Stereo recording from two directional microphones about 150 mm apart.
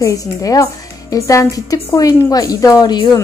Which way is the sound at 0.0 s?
20° left (ahead or behind).